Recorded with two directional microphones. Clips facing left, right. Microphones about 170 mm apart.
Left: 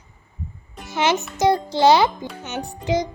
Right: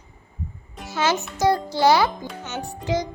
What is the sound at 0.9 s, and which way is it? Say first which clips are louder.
A child's voice: left 2 dB; 20° left (ahead or behind).